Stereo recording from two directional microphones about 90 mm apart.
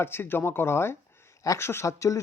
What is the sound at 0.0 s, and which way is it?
Speech, 25° left (ahead or behind).